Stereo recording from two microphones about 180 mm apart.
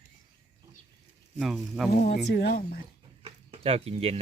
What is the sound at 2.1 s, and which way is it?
Speech, 60° left (ahead or behind).